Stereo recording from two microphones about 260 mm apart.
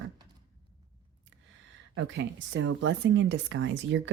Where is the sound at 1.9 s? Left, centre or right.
Right.